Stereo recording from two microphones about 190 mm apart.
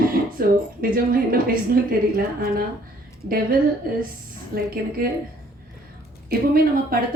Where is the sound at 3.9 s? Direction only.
50° right (ahead or behind).